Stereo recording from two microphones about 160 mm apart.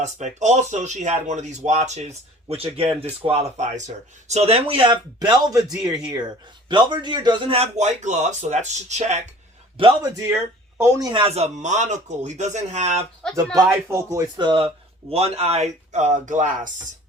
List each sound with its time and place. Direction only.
0.0 s speech: 45° right (ahead or behind); by 5.6 s 25° right (ahead or behind)
6.7 s speech: 30° right (ahead or behind); by 9.2 s 45° right (ahead or behind)
9.7 s a man's voice: 35° right (ahead or behind)
10.8 s speech: 20° right (ahead or behind)
11.1 s speech: 35° right (ahead or behind)
13.3 s speech: 20° right (ahead or behind); by 16.7 s 50° right (ahead or behind)